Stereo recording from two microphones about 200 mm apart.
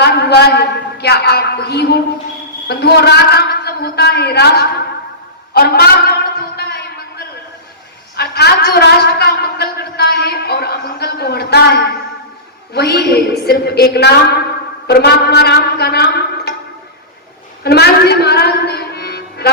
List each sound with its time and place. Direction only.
0.0 s a man's voice: 55° left (ahead or behind)
8.1 s a woman's voice: 55° left (ahead or behind)
17.6 s music: 55° left (ahead or behind)